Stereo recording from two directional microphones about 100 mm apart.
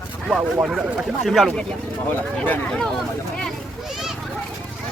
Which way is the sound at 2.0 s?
15° left (ahead or behind).